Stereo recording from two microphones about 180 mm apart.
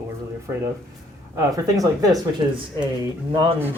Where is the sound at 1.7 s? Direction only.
20° right (ahead or behind).